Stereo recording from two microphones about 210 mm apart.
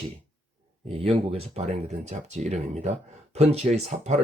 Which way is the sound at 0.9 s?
25° right (ahead or behind).